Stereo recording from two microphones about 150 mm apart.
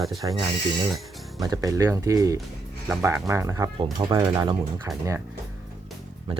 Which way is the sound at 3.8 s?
35° right (ahead or behind).